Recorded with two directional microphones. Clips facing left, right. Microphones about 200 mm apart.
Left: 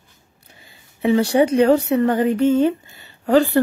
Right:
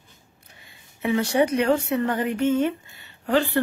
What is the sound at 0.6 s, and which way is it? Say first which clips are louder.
Speech: left 7 dB; 30° left (ahead or behind).